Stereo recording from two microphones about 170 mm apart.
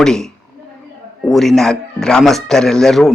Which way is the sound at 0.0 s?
5° left (ahead or behind).